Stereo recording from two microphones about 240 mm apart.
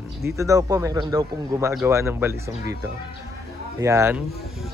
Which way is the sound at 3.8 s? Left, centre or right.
Centre.